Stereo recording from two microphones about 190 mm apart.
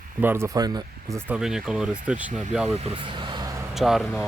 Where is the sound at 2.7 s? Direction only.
30° right (ahead or behind).